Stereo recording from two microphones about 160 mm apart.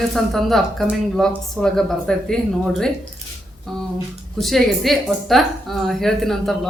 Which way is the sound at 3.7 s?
Centre (ahead or behind).